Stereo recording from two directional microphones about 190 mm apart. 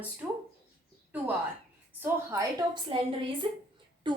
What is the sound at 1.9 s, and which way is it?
A woman's voice, 10° right (ahead or behind).